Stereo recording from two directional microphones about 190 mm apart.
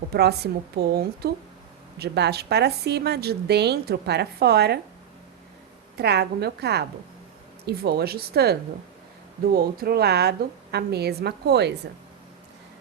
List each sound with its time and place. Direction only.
0.1 s a woman's voice: 60° right (ahead or behind)
6.0 s a woman's voice: 60° right (ahead or behind)